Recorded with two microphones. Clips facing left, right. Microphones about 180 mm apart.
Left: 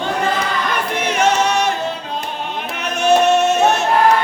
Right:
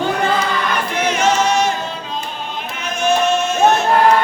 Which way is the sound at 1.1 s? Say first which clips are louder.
Even; 60° left (ahead or behind).